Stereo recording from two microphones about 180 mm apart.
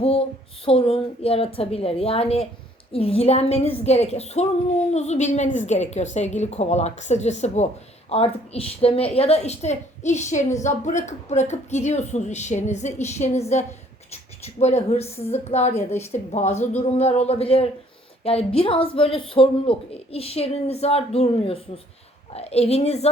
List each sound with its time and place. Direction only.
0.0 s a woman's voice: 35° left (ahead or behind)